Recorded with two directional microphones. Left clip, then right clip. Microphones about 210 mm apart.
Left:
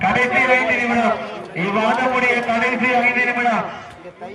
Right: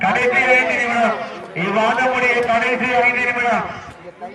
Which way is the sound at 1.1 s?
50° right (ahead or behind).